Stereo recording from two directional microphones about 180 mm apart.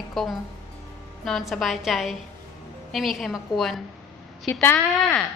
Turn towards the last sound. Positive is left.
turn(degrees=10)  # may be behind; listen again after turning